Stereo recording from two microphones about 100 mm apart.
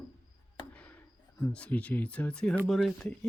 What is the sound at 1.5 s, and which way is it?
Speech, 15° left (ahead or behind).